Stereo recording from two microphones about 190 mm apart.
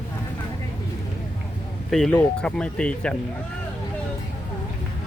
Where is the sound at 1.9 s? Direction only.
Centre (ahead or behind).